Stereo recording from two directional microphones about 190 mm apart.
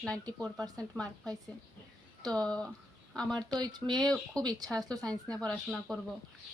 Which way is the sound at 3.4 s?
20° right (ahead or behind).